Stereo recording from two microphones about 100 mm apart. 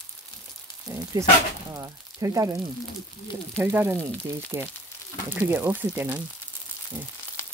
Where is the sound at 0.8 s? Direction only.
35° right (ahead or behind).